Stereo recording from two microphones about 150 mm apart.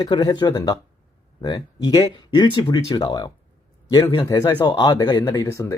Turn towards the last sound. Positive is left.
turn(degrees=20)  # may be behind; listen again after turning